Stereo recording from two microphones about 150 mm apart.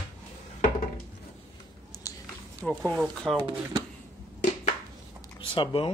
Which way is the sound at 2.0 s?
20° left (ahead or behind).